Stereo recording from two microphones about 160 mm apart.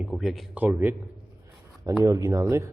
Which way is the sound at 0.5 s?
10° right (ahead or behind).